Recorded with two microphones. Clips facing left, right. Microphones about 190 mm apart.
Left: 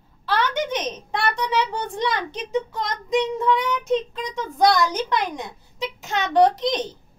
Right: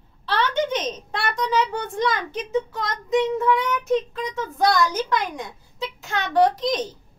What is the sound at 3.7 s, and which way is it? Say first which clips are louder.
Child singing: even; 20° left (ahead or behind).